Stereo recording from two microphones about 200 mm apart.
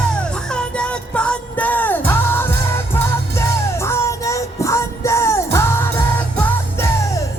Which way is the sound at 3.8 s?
15° left (ahead or behind).